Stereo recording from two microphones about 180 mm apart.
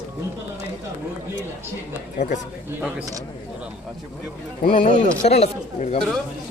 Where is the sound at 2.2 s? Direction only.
40° left (ahead or behind).